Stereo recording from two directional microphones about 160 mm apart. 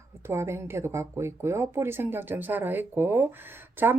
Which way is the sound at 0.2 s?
15° right (ahead or behind).